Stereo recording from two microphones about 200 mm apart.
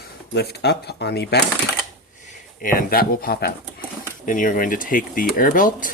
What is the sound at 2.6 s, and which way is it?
Speech, 45° left (ahead or behind).